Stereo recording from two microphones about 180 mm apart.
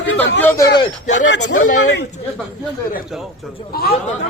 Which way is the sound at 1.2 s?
80° left.